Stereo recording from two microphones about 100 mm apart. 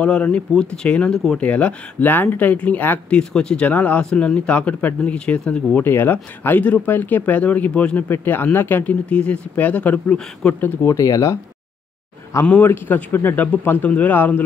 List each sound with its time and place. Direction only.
0.0 s speech: 10° left (ahead or behind)
5.9 s speech: 20° left (ahead or behind)
12.4 s speech: 20° left (ahead or behind)